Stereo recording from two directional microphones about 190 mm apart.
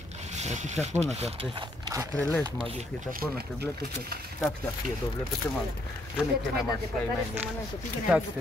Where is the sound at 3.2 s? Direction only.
5° left (ahead or behind).